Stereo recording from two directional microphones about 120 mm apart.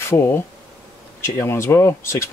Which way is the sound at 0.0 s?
20° left (ahead or behind).